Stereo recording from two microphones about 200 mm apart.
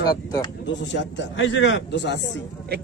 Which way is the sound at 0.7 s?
65° left (ahead or behind).